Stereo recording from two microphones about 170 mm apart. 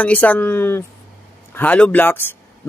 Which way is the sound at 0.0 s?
10° left (ahead or behind).